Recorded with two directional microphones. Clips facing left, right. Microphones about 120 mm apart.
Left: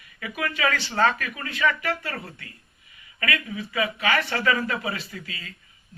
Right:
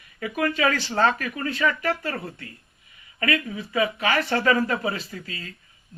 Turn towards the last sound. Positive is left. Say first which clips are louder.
# right 2 dB
turn(degrees=-40)  # may be behind; listen again after turning